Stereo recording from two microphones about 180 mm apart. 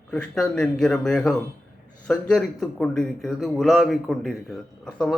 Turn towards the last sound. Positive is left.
turn(degrees=5)  # may be behind; listen again after turning